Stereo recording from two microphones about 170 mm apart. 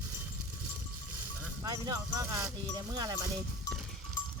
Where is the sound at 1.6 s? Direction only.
20° right (ahead or behind).